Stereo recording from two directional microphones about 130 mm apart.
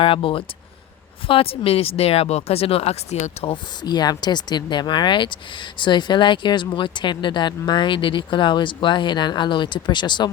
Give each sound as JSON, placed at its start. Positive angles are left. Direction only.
{"t": 0.0, "sound": "speech", "side_deg": 40}
{"t": 3.5, "sound": "speech", "side_deg": 35}